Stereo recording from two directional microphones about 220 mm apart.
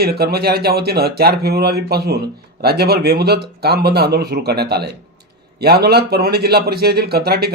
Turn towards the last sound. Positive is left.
turn(degrees=-45)  # may be behind; listen again after turning